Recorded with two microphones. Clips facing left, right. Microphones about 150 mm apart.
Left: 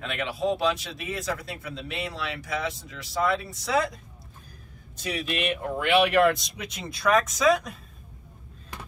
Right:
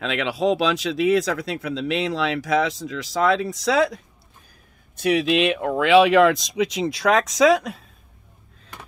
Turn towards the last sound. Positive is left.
turn(degrees=-80)